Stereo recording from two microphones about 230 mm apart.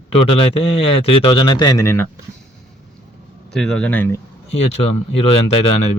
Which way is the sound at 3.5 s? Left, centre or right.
Centre.